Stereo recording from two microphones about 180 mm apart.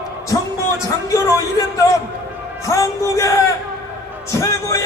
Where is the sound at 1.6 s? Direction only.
20° left (ahead or behind).